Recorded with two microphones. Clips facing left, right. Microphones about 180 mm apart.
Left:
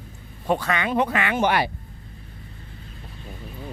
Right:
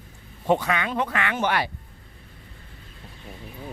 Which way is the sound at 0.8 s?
15° left (ahead or behind).